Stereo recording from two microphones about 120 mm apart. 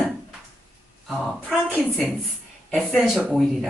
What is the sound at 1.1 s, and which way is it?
Speech, 10° right (ahead or behind).